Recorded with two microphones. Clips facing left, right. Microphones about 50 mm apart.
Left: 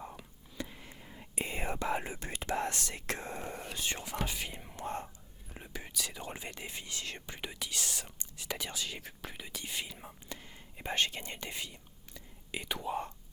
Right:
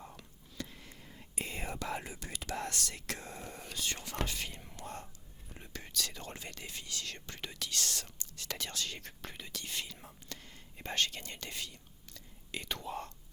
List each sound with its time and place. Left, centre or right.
0.0 s whispering: centre
4.3 s speech: centre
4.8 s speech: left
5.5 s speech: centre